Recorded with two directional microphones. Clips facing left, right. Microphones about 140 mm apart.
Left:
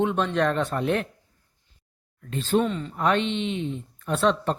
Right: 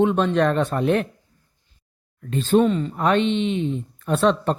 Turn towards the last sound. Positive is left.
turn(degrees=-55)  # may be behind; listen again after turning